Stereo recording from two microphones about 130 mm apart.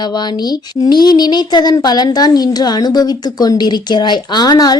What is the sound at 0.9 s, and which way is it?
Speech, 35° left (ahead or behind).